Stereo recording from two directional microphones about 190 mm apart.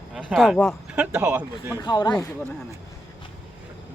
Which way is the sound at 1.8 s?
20° left (ahead or behind).